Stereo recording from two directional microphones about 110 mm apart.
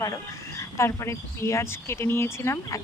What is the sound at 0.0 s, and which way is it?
Speech, 30° left (ahead or behind).